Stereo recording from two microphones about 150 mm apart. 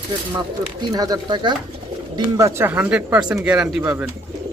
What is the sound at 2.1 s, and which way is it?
Speech, 20° right (ahead or behind).